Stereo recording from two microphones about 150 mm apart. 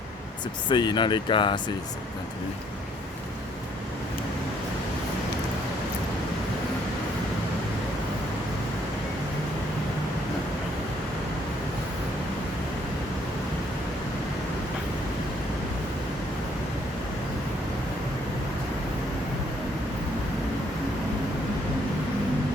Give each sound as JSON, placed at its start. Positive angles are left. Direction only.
{"t": 0.7, "sound": "speech", "side_deg": 30}